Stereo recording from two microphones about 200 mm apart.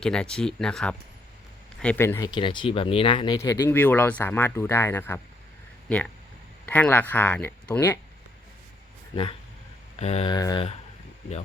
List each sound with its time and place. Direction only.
0.0 s speech: 5° left (ahead or behind)
6.7 s speech: 10° left (ahead or behind)
10.0 s speech: 30° left (ahead or behind)